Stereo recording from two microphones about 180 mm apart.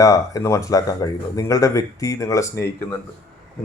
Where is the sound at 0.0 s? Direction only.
20° left (ahead or behind).